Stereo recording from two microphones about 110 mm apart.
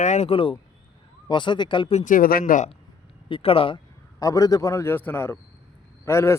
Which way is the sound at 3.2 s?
55° left (ahead or behind).